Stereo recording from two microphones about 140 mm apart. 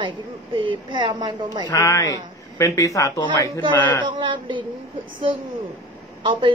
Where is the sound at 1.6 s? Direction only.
20° left (ahead or behind).